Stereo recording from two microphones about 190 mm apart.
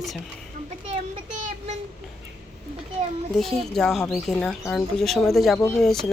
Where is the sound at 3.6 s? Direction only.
Centre (ahead or behind).